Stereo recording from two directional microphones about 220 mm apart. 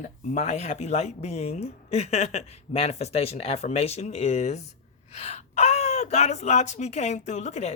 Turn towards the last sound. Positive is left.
turn(degrees=30)  # may be behind; listen again after turning